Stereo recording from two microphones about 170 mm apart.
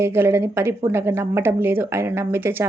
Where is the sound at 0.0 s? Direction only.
15° right (ahead or behind).